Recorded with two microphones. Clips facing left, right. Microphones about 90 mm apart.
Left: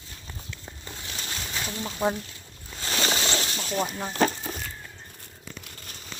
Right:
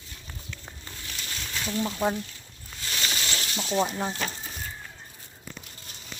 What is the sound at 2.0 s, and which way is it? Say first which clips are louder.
Speech: left 2 dB; 10° left (ahead or behind).